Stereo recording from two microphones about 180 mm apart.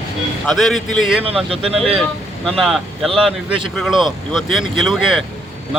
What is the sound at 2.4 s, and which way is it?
Speech, centre (ahead or behind).